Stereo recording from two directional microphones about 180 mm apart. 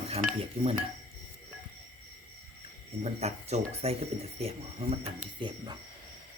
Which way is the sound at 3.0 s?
35° right (ahead or behind).